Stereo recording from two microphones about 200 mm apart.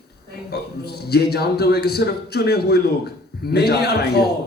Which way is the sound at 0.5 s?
50° left (ahead or behind).